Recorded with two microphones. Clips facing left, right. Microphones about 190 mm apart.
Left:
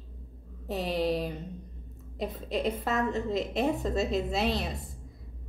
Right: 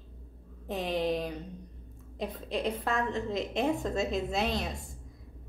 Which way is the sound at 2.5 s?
5° left (ahead or behind).